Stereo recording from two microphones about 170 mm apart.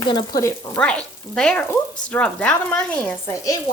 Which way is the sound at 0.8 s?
5° left (ahead or behind).